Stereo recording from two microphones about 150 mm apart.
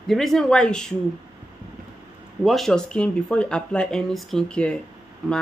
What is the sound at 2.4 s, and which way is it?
Speech, centre (ahead or behind).